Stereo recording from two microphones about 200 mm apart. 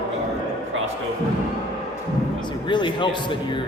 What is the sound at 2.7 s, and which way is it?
Speech, 25° left (ahead or behind).